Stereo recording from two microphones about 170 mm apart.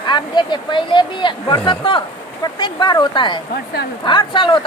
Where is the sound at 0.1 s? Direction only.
25° left (ahead or behind).